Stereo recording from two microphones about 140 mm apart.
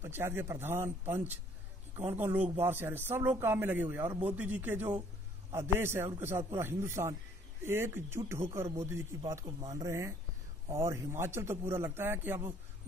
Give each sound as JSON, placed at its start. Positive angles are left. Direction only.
{"t": 0.0, "sound": "a man's voice", "side_deg": -15}